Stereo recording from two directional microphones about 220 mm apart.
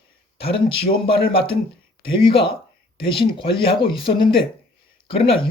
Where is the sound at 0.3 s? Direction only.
25° left (ahead or behind).